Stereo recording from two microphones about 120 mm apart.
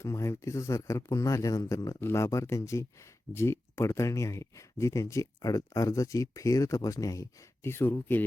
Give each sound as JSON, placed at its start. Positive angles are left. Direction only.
{"t": 0.0, "sound": "speech", "side_deg": 25}